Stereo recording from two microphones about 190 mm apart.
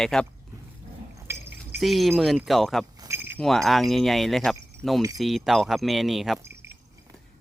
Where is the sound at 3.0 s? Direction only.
15° right (ahead or behind).